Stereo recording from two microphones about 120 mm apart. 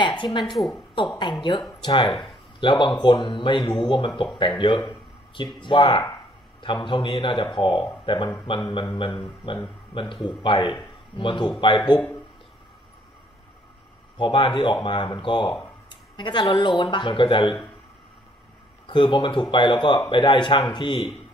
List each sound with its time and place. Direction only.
0.0 s a sound: 40° left (ahead or behind)
0.5 s speech: centre (ahead or behind)
0.9 s speech: 40° left (ahead or behind)
14.1 s speech: 40° left (ahead or behind)
18.9 s speech: 40° left (ahead or behind)